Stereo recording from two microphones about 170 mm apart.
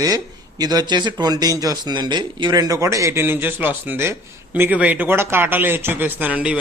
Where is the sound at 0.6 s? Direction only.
20° right (ahead or behind).